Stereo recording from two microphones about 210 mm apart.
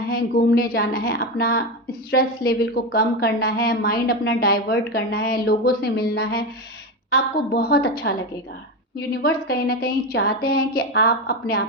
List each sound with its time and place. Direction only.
0.1 s a woman's voice: 45° left (ahead or behind)